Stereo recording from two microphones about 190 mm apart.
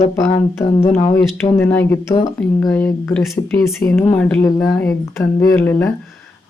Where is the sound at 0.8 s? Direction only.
15° left (ahead or behind).